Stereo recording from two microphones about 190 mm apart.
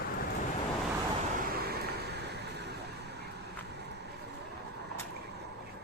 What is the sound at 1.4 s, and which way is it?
Vehicle, 50° right (ahead or behind).